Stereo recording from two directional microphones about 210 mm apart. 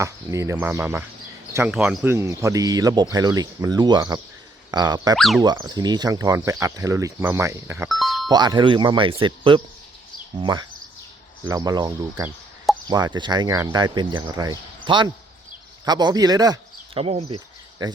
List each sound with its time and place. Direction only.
0.0 s speech: 15° right (ahead or behind)
2.1 s speech: 15° right (ahead or behind)
5.1 s speech: centre (ahead or behind)
5.4 s speech: 20° right (ahead or behind)
7.9 s music: centre (ahead or behind)
8.3 s speech: 20° right (ahead or behind)